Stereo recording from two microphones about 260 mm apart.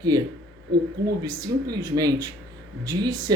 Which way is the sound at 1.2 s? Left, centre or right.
Centre.